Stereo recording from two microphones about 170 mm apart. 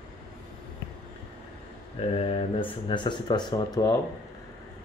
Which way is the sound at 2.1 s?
35° left (ahead or behind).